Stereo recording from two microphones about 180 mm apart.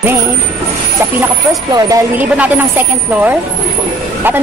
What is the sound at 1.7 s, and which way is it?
A woman's voice, 20° right (ahead or behind).